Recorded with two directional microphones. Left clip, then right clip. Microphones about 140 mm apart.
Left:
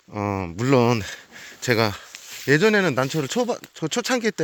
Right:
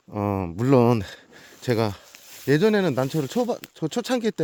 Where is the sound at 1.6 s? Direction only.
30° right (ahead or behind).